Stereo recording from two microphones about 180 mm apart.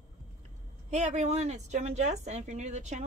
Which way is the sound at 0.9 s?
40° right (ahead or behind).